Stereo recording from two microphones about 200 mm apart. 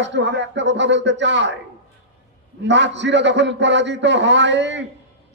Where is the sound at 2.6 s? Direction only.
60° right (ahead or behind).